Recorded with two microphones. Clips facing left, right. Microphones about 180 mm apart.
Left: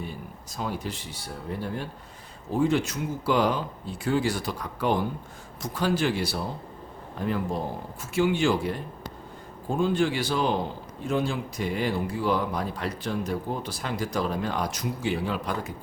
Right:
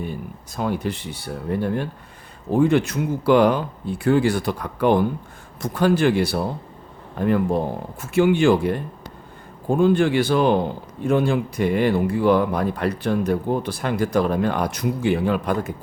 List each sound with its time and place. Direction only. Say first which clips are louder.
0.5 s speech: right 8 dB; 60° right (ahead or behind)